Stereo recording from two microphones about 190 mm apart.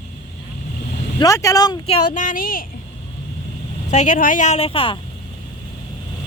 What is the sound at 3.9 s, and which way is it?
Speech, 40° left (ahead or behind).